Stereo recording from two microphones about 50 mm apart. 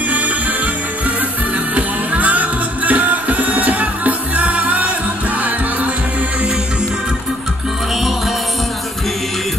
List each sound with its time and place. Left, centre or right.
1.8 s music: right